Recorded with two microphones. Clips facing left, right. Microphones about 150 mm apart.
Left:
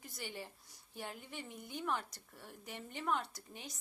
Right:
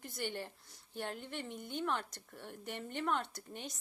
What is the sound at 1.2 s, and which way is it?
Speech, 65° right (ahead or behind).